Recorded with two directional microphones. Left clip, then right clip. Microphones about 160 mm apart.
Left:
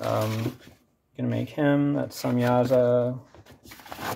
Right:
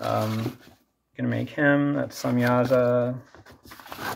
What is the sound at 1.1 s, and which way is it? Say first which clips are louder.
Speech: right 1 dB; 20° left (ahead or behind).